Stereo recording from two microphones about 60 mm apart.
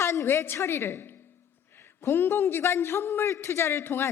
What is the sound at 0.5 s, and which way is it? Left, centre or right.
A woman's voice, left.